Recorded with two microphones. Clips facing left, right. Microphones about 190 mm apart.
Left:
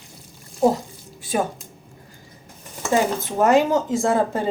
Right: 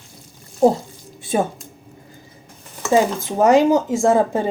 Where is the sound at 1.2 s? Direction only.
25° right (ahead or behind).